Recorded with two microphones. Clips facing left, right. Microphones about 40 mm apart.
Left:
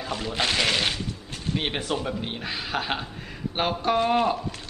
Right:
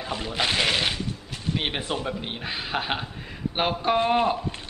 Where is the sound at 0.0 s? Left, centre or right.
Centre.